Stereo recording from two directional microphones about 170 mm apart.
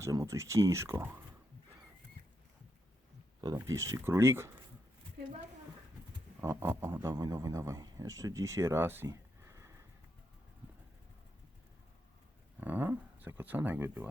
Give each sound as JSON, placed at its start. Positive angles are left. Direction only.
{"t": 0.0, "sound": "speech", "side_deg": -20}
{"t": 3.4, "sound": "speech", "side_deg": -20}
{"t": 6.4, "sound": "speech", "side_deg": -15}
{"t": 12.5, "sound": "speech", "side_deg": -10}